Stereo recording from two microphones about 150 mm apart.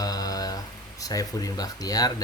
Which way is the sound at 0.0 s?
25° left (ahead or behind).